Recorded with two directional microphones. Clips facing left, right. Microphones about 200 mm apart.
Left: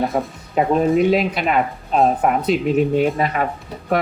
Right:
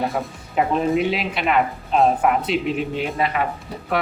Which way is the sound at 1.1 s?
45° left (ahead or behind).